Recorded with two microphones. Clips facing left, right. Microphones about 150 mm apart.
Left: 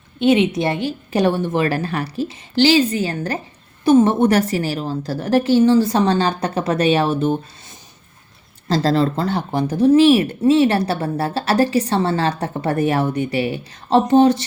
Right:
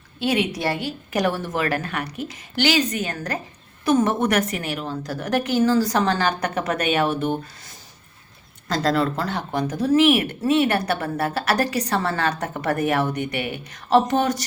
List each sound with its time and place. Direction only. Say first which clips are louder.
0.2 s speech: left 7 dB; 25° left (ahead or behind)
8.6 s speech: left 4 dB; 30° left (ahead or behind)